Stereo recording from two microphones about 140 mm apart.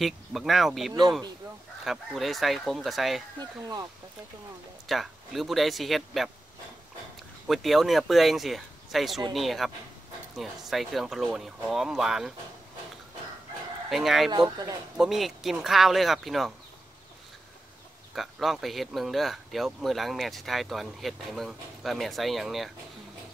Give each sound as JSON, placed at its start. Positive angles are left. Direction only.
{"t": 0.0, "sound": "speech", "side_deg": 0}
{"t": 3.3, "sound": "speech", "side_deg": -25}
{"t": 4.8, "sound": "speech", "side_deg": 0}
{"t": 7.4, "sound": "speech", "side_deg": 0}
{"t": 13.8, "sound": "speech", "side_deg": 0}
{"t": 18.1, "sound": "speech", "side_deg": 0}